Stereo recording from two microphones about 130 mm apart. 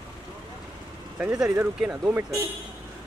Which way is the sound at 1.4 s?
25° right (ahead or behind).